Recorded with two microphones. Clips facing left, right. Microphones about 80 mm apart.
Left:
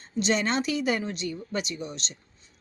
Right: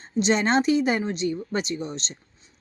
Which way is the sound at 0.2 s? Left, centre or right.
Right.